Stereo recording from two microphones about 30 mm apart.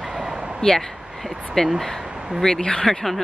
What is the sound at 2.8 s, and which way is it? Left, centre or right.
Speech, centre.